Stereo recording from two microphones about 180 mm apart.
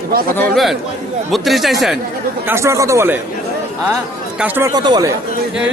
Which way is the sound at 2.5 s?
15° right (ahead or behind).